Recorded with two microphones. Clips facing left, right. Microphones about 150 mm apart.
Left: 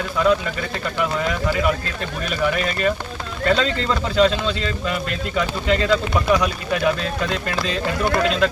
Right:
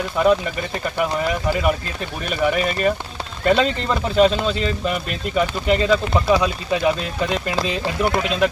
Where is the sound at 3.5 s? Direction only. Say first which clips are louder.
Right 2 dB; 20° right (ahead or behind).